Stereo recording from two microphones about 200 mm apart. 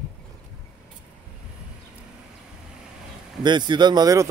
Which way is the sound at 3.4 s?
20° right (ahead or behind).